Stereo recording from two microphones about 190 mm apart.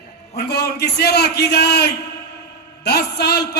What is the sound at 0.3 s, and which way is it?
A man's voice, 60° left (ahead or behind).